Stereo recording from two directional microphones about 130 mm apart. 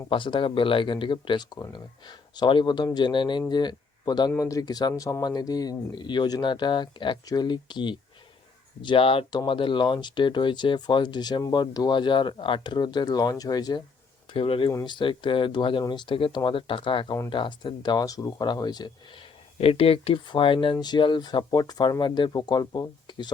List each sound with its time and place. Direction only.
0.1 s speech: 40° left (ahead or behind)
14.3 s speech: 45° left (ahead or behind)
19.5 s speech: 45° left (ahead or behind)